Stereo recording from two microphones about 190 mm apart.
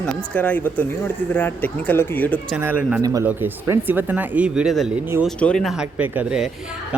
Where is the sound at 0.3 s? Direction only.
10° left (ahead or behind).